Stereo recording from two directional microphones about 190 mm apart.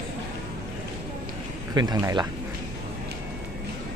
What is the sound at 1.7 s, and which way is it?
Speech, 20° right (ahead or behind).